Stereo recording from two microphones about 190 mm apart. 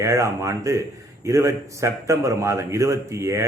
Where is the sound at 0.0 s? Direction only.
15° right (ahead or behind).